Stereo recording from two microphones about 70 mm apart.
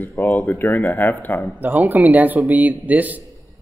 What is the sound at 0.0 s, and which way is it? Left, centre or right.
Speech, left.